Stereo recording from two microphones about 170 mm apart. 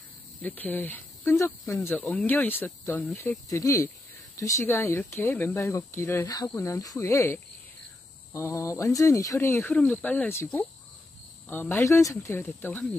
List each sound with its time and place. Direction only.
0.4 s speech: 10° left (ahead or behind)